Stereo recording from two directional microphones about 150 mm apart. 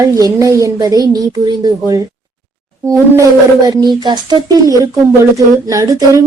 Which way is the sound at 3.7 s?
30° right (ahead or behind).